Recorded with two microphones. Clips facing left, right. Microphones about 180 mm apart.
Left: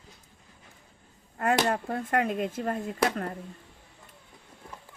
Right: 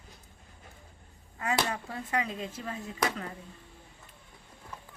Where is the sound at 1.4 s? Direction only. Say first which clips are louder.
Left 6 dB; 55° left (ahead or behind).